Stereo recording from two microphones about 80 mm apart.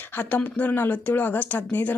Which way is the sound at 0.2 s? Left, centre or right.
Left.